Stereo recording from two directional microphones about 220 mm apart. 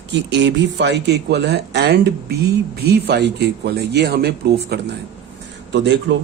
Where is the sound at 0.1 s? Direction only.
55° right (ahead or behind).